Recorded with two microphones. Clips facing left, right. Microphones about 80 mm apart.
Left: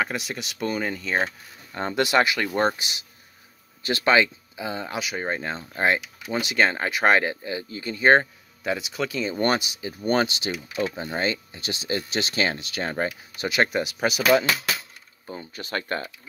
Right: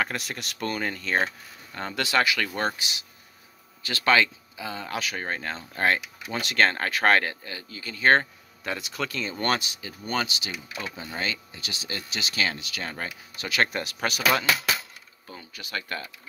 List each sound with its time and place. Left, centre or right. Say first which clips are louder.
0.0 s speech: left 2 dB; centre
1.8 s speech: left 4 dB; left
10.0 s speech: left 6 dB; left
13.7 s speech: left 5 dB; centre
15.2 s speech: left 7 dB; left